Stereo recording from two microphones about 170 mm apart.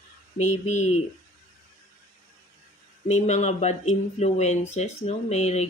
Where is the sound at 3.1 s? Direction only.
40° left (ahead or behind).